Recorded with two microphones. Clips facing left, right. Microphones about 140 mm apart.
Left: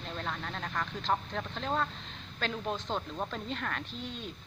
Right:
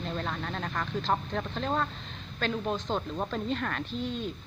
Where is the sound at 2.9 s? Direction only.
10° right (ahead or behind).